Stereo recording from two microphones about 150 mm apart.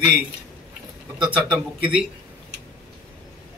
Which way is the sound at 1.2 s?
10° right (ahead or behind).